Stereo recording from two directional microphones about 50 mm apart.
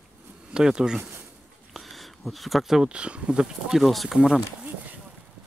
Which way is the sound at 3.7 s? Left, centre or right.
Centre.